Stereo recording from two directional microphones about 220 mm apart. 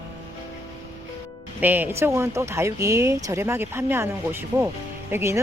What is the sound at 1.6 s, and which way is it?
Speech, 10° right (ahead or behind).